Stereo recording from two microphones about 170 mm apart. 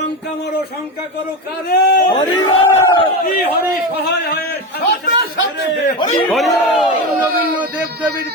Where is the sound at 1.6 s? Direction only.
65° left (ahead or behind).